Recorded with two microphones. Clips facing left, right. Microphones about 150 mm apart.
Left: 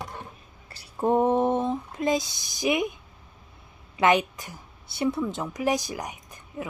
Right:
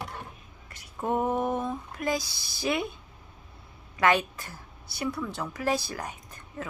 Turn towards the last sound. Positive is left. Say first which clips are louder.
# left 2 dB
turn(degrees=15)  # may be behind; listen again after turning